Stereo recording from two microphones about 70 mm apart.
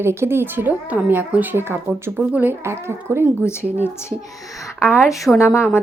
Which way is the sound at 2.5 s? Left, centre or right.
Right.